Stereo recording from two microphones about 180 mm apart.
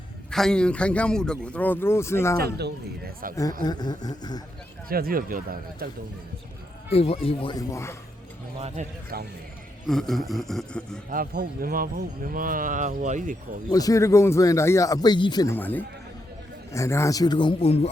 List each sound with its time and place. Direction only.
0.3 s a man's voice: 5° left (ahead or behind)
2.6 s speech: 60° right (ahead or behind)
3.6 s a man's voice: 25° left (ahead or behind)
4.9 s speech: 55° right (ahead or behind)
6.9 s speech: 35° left (ahead or behind)
7.7 s a man's voice: 15° left (ahead or behind)
8.6 s speech: 40° right (ahead or behind)
9.8 s a man's voice: centre (ahead or behind)
11.1 s speech: 50° right (ahead or behind)
13.7 s a man's voice: 20° left (ahead or behind)
15.5 s a man's voice: 10° left (ahead or behind); by 17.8 s 35° left (ahead or behind)